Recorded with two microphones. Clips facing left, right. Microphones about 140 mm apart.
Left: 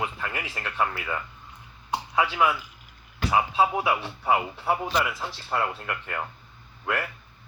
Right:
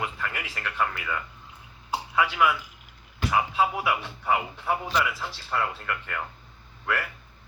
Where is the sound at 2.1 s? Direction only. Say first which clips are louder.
Even; 25° left (ahead or behind).